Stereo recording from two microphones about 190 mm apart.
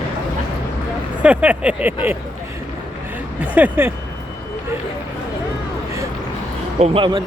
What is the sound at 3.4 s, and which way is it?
Speech, 5° right (ahead or behind).